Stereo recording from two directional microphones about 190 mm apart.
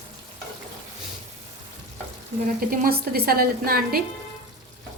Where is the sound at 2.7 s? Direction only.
55° right (ahead or behind).